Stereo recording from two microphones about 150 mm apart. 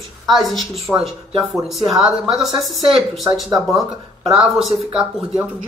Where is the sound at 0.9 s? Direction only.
Centre (ahead or behind).